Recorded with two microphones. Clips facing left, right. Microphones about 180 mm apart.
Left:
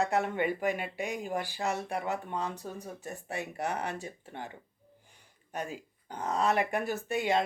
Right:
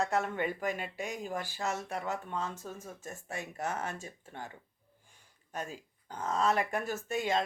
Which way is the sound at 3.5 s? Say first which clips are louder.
Left 2 dB; 15° left (ahead or behind).